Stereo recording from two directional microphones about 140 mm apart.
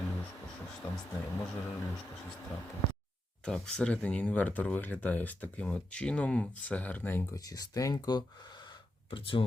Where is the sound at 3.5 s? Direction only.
5° left (ahead or behind).